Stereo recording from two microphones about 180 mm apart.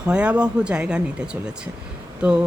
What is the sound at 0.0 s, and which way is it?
A woman's voice, 5° right (ahead or behind).